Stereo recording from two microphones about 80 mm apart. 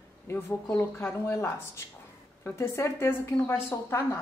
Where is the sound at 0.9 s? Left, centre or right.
Left.